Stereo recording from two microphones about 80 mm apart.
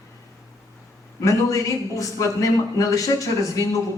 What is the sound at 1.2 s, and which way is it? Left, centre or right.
A man's voice, left.